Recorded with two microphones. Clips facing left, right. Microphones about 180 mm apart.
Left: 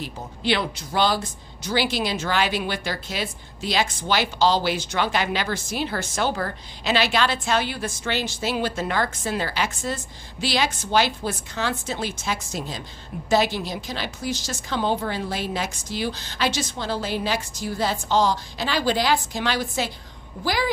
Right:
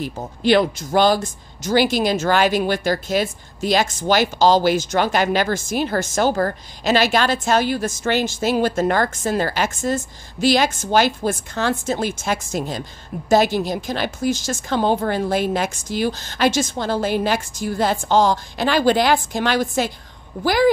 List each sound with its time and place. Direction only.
0.0 s speech: 45° right (ahead or behind)